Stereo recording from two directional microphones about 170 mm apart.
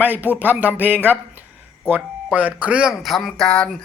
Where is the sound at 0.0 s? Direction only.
10° right (ahead or behind).